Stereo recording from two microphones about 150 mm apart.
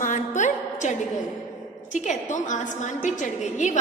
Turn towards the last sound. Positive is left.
turn(degrees=55)  # may be behind; listen again after turning